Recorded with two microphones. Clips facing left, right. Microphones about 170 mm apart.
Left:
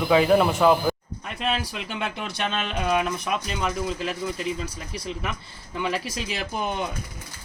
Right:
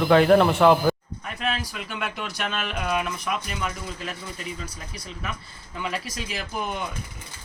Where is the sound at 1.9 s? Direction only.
30° left (ahead or behind).